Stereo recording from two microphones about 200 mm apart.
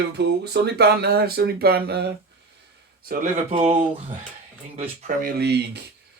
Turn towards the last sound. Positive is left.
turn(degrees=-55)  # may be behind; listen again after turning